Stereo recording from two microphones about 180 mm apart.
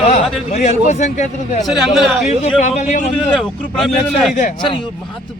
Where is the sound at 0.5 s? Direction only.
40° left (ahead or behind).